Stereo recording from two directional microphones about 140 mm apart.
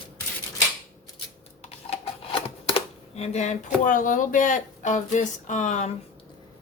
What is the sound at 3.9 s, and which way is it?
Speech, 70° left (ahead or behind).